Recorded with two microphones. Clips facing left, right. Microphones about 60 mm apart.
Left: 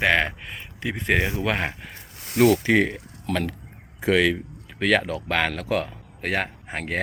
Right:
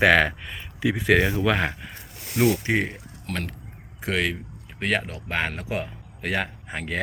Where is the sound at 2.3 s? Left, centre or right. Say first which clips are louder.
Left 4 dB; left.